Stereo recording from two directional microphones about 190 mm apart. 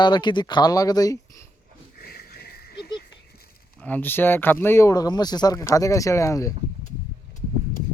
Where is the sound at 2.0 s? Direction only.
55° left (ahead or behind).